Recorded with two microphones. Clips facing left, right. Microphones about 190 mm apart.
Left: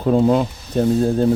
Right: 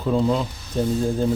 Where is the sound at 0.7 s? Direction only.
65° left (ahead or behind).